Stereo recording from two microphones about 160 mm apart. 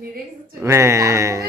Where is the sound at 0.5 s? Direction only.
15° right (ahead or behind).